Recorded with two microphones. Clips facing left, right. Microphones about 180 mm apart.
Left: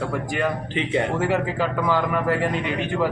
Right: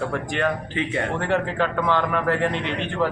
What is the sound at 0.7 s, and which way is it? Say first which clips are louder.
Speech: left 2 dB; 20° left (ahead or behind).